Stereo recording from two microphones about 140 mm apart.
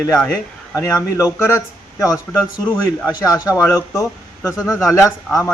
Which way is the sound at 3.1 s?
25° left (ahead or behind).